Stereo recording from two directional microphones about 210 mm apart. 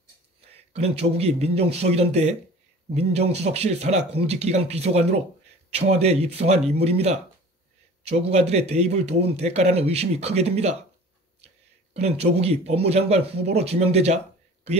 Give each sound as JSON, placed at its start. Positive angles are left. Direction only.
{"t": 0.5, "sound": "a man's voice", "side_deg": -30}
{"t": 8.2, "sound": "a man's voice", "side_deg": -30}